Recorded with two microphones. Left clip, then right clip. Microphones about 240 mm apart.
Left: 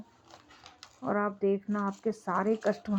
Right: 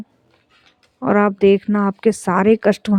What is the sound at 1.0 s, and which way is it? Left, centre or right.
Speech, right.